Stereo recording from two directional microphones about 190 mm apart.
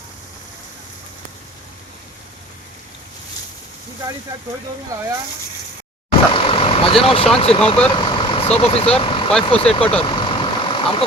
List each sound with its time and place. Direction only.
6.1 s vehicle: 25° left (ahead or behind)
7.3 s speech: 30° left (ahead or behind)
7.9 s vehicle: 25° left (ahead or behind)
9.4 s speech: 30° left (ahead or behind)
10.0 s vehicle: 25° left (ahead or behind)